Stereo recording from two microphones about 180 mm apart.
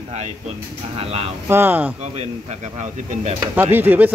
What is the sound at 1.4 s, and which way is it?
Speech, 10° right (ahead or behind).